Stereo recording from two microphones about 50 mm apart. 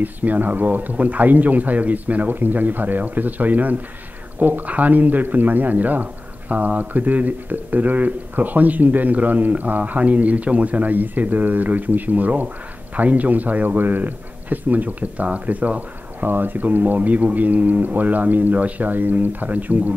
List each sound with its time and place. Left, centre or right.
0.0 s speech: right